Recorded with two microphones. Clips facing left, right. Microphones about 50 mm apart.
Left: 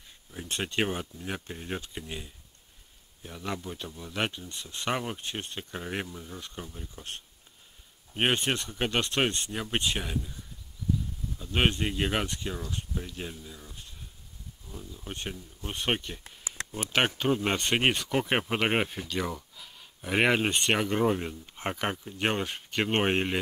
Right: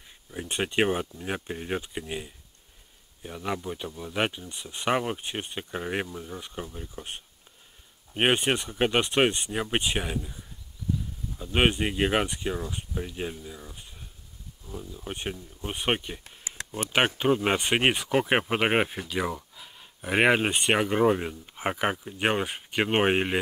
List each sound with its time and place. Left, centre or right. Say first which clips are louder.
0.3 s speech: right 4 dB; centre